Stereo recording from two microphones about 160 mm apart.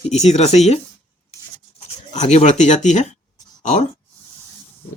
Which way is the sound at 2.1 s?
45° left (ahead or behind).